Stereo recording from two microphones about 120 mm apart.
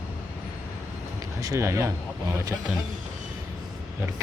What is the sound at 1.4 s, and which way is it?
Speech, 25° right (ahead or behind).